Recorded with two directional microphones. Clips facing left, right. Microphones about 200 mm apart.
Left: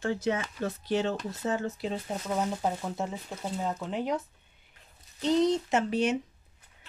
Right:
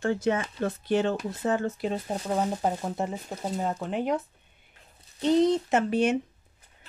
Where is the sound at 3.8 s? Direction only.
55° right (ahead or behind).